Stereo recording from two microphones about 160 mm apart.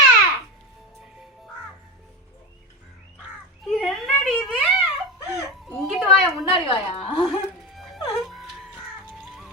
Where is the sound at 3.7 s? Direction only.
Centre (ahead or behind).